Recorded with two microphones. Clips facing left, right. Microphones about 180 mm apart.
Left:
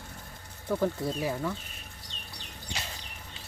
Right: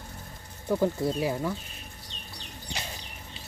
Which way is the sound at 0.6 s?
10° right (ahead or behind).